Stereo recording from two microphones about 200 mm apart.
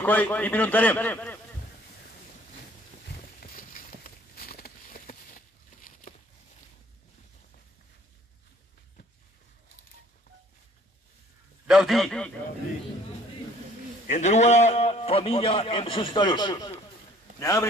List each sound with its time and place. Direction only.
0.0 s a man's voice: 10° left (ahead or behind)
3.1 s a sound: 45° left (ahead or behind)
11.6 s a man's voice: centre (ahead or behind)
14.1 s a man's voice: 35° left (ahead or behind); by 17.6 s 15° left (ahead or behind)